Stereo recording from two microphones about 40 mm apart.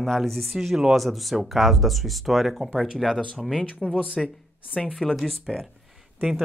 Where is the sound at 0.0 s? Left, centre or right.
Centre.